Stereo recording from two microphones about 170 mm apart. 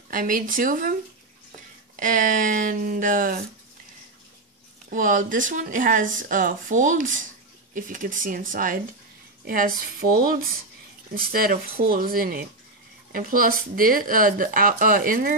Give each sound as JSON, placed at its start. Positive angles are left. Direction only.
{"t": 0.1, "sound": "speech", "side_deg": -55}
{"t": 2.0, "sound": "speech", "side_deg": -50}
{"t": 4.9, "sound": "speech", "side_deg": -50}